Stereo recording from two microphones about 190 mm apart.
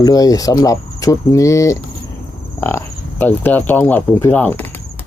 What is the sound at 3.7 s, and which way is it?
Speech, 10° left (ahead or behind).